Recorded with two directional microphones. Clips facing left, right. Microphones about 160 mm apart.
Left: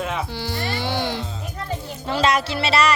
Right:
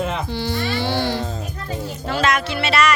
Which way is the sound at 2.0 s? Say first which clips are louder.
Left 1 dB; 30° left (ahead or behind).